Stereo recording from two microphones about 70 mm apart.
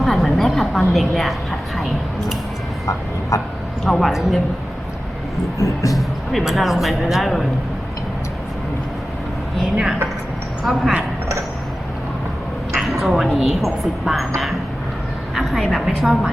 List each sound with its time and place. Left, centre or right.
0.0 s a woman's voice: centre
2.8 s speech: left
3.8 s speech: centre
5.5 s speech: left
5.9 s speech: centre
10.7 s speech: centre
12.7 s a sound: centre
13.2 s speech: centre
15.4 s speech: centre